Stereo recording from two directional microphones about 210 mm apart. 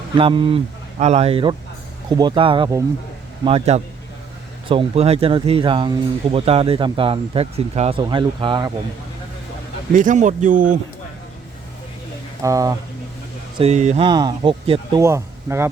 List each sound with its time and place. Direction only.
0.2 s speech: 25° right (ahead or behind)
10.0 s speech: 35° right (ahead or behind)
12.4 s speech: 15° right (ahead or behind)
13.6 s speech: 30° right (ahead or behind); by 15.7 s 10° right (ahead or behind)